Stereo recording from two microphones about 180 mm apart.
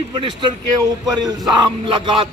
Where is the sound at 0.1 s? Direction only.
25° right (ahead or behind).